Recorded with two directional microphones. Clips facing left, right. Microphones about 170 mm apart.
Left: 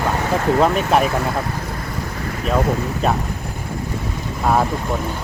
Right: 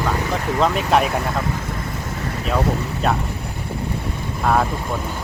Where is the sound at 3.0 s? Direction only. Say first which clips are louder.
Left 1 dB; 5° left (ahead or behind).